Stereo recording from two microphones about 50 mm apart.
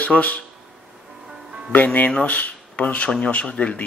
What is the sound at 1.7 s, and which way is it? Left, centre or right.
Speech, left.